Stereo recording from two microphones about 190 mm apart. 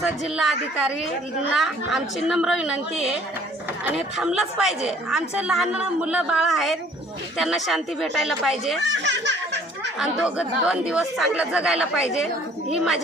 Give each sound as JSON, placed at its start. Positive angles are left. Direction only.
{"t": 0.0, "sound": "a woman's voice", "side_deg": -5}
{"t": 9.0, "sound": "laughter", "side_deg": -65}
{"t": 10.0, "sound": "a woman's voice", "side_deg": -5}